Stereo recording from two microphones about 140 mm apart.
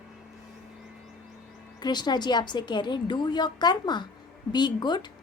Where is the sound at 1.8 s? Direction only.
30° left (ahead or behind).